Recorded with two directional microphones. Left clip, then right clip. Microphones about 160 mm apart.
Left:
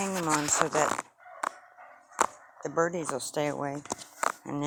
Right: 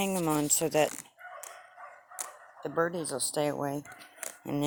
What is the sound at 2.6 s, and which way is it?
Speech, 10° left (ahead or behind).